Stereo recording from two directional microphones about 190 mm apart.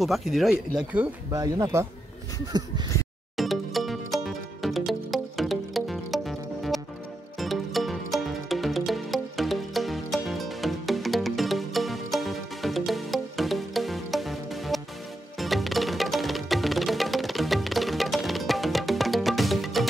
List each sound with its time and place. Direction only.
0.0 s speech: centre (ahead or behind)
1.3 s speech: 15° right (ahead or behind)
2.5 s a sound: 20° right (ahead or behind)
3.3 s music: centre (ahead or behind)